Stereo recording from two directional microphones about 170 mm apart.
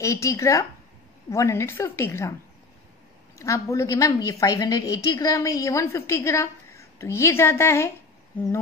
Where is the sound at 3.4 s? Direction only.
15° left (ahead or behind).